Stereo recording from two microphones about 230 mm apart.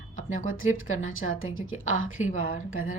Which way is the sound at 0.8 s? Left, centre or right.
Left.